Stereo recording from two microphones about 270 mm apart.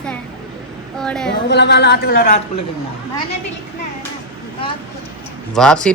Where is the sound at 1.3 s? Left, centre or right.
Left.